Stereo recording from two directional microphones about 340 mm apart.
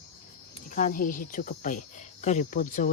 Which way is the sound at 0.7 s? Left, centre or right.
Left.